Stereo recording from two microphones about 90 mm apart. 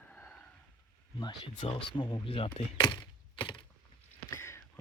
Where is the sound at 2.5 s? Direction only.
60° left (ahead or behind).